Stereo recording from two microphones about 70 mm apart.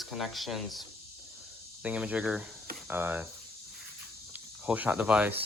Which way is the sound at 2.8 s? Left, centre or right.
Right.